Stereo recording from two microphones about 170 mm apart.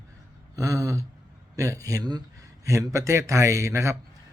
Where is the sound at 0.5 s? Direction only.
20° right (ahead or behind).